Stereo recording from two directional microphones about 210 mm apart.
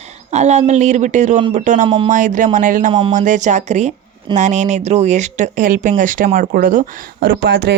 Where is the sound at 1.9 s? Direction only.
25° right (ahead or behind).